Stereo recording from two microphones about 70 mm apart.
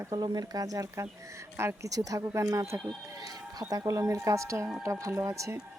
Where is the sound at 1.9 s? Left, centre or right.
Right.